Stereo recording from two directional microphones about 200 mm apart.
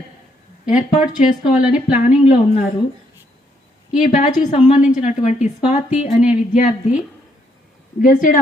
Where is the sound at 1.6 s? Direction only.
5° right (ahead or behind).